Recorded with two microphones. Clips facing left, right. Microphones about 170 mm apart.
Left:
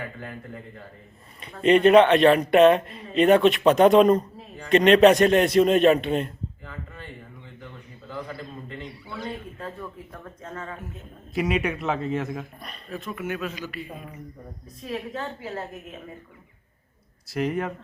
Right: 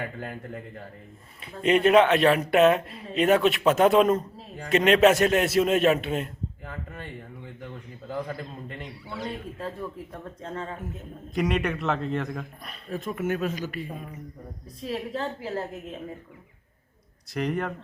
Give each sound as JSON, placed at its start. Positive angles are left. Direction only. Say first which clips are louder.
{"t": 0.2, "sound": "speech", "louder": "right 2 dB", "side_deg": -50}
{"t": 1.4, "sound": "speech", "louder": "left 4 dB", "side_deg": -5}
{"t": 6.7, "sound": "a sound", "louder": "right 2 dB", "side_deg": -50}
{"t": 10.1, "sound": "speech", "louder": "right 2 dB", "side_deg": -30}
{"t": 11.3, "sound": "speech", "louder": "left 1 dB", "side_deg": 5}
{"t": 12.9, "sound": "speech", "louder": "right 3 dB", "side_deg": -45}
{"t": 14.8, "sound": "a woman's voice", "louder": "right 1 dB", "side_deg": -30}
{"t": 17.3, "sound": "speech", "louder": "left 2 dB", "side_deg": 0}